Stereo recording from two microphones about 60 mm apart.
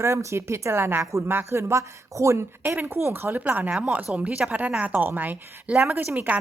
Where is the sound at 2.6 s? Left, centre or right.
Right.